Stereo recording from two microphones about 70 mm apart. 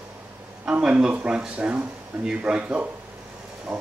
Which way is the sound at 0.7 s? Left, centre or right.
Centre.